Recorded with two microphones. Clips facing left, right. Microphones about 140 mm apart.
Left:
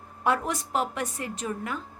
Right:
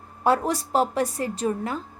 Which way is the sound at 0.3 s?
35° right (ahead or behind).